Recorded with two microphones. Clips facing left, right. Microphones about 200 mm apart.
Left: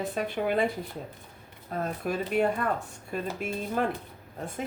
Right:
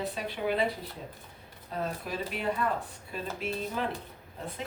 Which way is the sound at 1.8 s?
50° left (ahead or behind).